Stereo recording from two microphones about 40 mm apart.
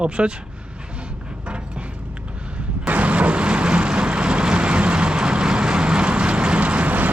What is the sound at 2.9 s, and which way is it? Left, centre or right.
Vehicle, right.